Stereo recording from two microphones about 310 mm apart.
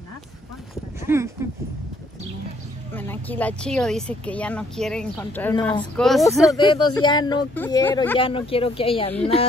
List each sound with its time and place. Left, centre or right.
1.0 s speech: centre
2.9 s speech: centre
5.9 s speech: centre
6.5 s speech: centre